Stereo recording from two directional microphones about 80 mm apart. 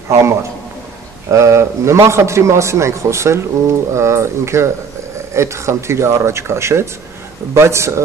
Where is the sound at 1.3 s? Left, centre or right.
Right.